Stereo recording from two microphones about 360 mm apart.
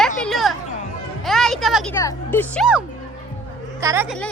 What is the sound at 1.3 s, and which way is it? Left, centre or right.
Music, centre.